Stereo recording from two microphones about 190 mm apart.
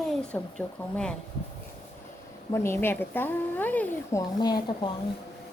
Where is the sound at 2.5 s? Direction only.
15° left (ahead or behind).